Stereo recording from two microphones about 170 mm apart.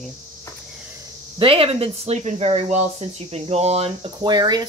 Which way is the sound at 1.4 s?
35° right (ahead or behind).